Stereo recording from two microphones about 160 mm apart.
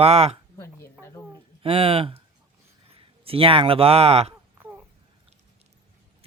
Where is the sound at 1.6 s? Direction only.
35° right (ahead or behind).